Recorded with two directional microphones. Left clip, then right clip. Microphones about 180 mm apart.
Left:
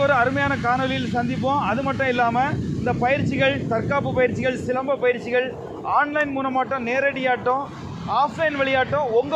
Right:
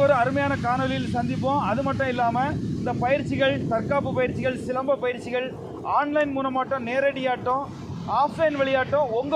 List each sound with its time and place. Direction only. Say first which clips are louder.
0.0 s speech: left 1 dB; 50° left (ahead or behind)